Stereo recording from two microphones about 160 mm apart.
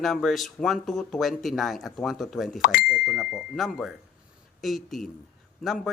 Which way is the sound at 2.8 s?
Centre (ahead or behind).